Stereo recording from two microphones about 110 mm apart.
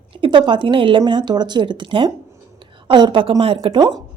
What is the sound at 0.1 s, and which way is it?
A woman's voice, 50° right (ahead or behind).